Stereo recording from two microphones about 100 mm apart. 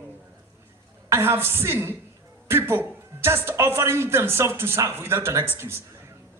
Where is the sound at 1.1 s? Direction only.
25° right (ahead or behind).